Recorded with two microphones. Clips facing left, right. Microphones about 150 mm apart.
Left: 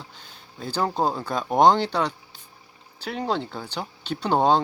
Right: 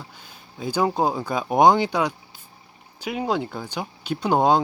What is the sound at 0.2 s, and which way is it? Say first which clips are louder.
Speech: right 5 dB; 10° right (ahead or behind).